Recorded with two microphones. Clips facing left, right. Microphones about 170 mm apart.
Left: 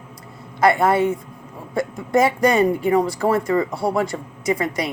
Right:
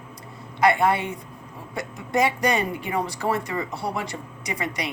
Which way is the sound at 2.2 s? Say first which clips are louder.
Left 7 dB; 40° left (ahead or behind).